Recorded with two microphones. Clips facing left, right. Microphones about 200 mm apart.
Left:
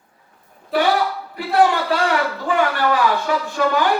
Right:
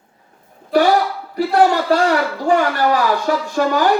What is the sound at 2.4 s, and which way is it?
A man's voice, 40° right (ahead or behind).